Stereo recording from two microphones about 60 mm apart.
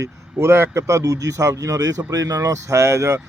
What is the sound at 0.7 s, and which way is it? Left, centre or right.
Speech, right.